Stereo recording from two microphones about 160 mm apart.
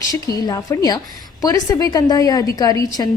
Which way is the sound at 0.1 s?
25° left (ahead or behind).